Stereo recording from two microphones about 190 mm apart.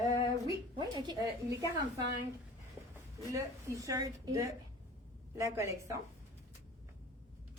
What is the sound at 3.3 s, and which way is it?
A woman's voice, 15° right (ahead or behind).